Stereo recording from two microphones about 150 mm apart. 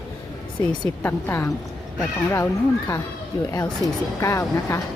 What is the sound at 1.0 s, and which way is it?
A woman's voice, 15° left (ahead or behind).